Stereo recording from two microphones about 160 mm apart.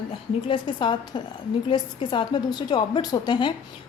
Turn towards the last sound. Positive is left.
turn(degrees=30)  # may be behind; listen again after turning